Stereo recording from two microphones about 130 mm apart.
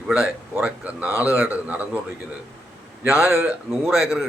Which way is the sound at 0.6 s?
10° right (ahead or behind).